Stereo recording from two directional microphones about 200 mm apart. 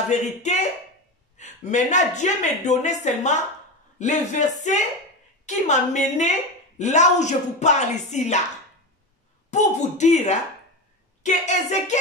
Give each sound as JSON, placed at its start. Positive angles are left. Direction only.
{"t": 0.4, "sound": "speech", "side_deg": 35}
{"t": 9.5, "sound": "speech", "side_deg": 35}